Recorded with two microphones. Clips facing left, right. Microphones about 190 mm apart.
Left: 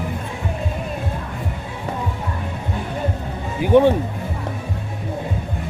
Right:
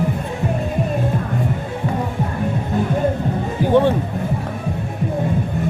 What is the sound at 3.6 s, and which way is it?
Speech, 15° left (ahead or behind).